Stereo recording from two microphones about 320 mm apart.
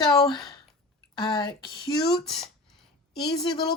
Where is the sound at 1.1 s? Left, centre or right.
Centre.